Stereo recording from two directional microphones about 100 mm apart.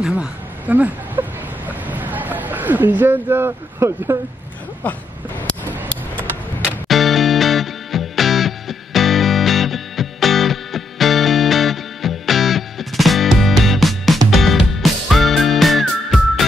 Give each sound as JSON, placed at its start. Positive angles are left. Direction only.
{"t": 0.0, "sound": "speech", "side_deg": -10}
{"t": 1.9, "sound": "a sound", "side_deg": -15}
{"t": 4.8, "sound": "speech", "side_deg": 15}
{"t": 6.9, "sound": "music", "side_deg": 0}